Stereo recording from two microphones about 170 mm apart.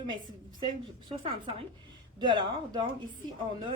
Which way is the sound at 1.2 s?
30° right (ahead or behind).